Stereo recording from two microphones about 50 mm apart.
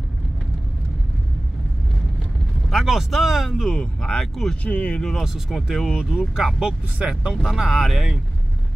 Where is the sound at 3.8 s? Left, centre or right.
Centre.